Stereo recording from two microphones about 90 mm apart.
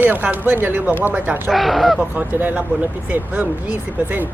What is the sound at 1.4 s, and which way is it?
Speech, centre (ahead or behind).